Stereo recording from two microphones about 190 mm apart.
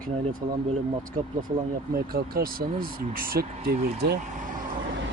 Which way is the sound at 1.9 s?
50° right (ahead or behind).